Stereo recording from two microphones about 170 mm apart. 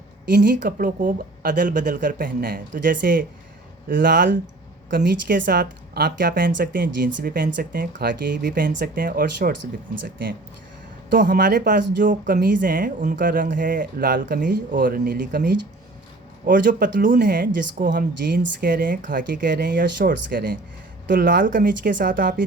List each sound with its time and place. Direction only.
0.3 s a woman's voice: 60° right (ahead or behind)
3.9 s speech: 90° right
4.9 s speech: 70° right (ahead or behind)
7.2 s a woman's voice: 60° right (ahead or behind)
11.1 s a woman's voice: 55° right (ahead or behind); by 11.9 s 80° right
11.9 s a woman's voice: 50° right (ahead or behind)
16.5 s speech: 55° right (ahead or behind)
18.3 s a woman's voice: 80° right; by 21.7 s 55° right (ahead or behind)
21.8 s speech: 90° right